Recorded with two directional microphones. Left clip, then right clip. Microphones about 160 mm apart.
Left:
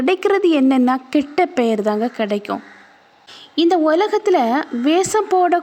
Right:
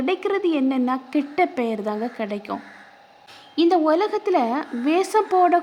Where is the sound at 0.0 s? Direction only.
35° left (ahead or behind).